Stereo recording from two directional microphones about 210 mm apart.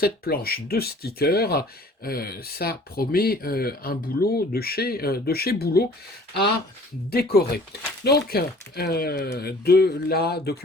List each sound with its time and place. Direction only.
0.0 s speech: 45° left (ahead or behind)
7.1 s speech: 45° left (ahead or behind)